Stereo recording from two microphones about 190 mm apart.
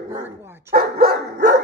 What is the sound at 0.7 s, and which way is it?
Dog, 55° right (ahead or behind).